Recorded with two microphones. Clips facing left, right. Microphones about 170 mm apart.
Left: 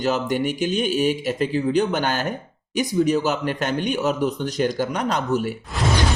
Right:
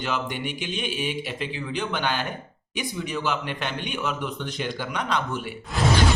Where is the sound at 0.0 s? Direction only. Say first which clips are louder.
Left 7 dB; 40° left (ahead or behind).